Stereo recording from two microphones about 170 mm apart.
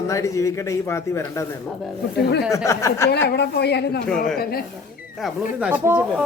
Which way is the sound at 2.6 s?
15° left (ahead or behind).